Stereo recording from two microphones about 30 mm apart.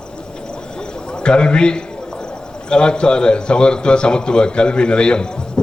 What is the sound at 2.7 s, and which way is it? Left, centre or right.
A man's voice, left.